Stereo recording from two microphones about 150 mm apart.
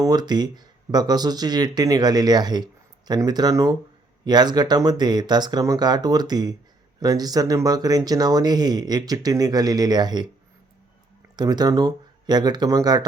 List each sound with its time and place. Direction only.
0.0 s speech: 25° right (ahead or behind)
11.3 s speech: 25° right (ahead or behind)